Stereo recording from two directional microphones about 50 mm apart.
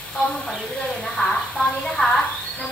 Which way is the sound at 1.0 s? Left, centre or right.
Centre.